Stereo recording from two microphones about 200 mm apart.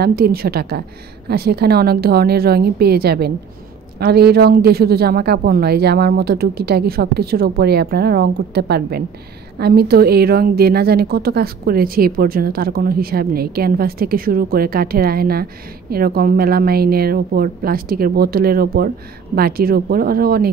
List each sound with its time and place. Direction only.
0.0 s a woman's voice: 50° right (ahead or behind)